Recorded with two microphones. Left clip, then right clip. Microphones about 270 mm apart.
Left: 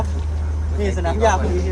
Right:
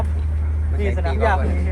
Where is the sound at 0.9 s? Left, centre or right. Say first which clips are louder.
Left 5 dB; left.